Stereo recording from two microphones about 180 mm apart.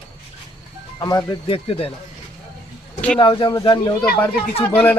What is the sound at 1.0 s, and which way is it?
Speech, 20° left (ahead or behind).